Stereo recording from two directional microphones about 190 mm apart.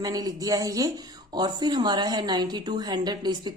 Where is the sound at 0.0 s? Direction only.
20° right (ahead or behind).